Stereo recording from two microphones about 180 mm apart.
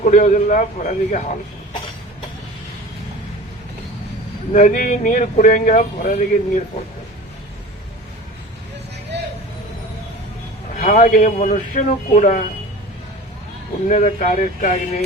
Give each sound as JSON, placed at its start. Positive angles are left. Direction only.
{"t": 0.0, "sound": "speech", "side_deg": 45}
{"t": 4.5, "sound": "speech", "side_deg": 45}
{"t": 10.8, "sound": "speech", "side_deg": 50}
{"t": 13.8, "sound": "speech", "side_deg": 40}